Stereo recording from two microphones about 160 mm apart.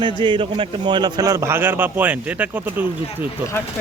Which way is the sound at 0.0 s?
30° right (ahead or behind).